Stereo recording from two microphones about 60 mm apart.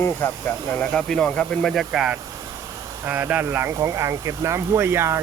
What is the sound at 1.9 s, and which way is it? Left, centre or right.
Speech, centre.